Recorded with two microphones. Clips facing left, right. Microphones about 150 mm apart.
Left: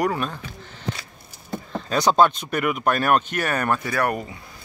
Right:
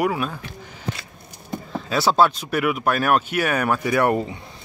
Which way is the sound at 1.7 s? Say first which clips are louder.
Even; 5° right (ahead or behind).